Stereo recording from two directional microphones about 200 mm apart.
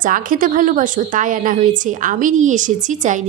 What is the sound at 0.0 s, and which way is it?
A woman's voice, 45° right (ahead or behind).